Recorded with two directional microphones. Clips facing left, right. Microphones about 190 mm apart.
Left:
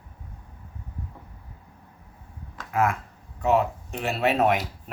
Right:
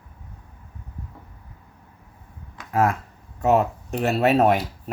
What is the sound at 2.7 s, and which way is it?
Speech, 35° right (ahead or behind).